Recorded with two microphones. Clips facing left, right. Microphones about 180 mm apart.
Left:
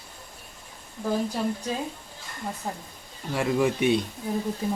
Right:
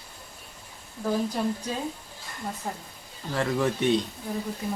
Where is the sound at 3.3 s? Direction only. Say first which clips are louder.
Left 2 dB; 10° left (ahead or behind).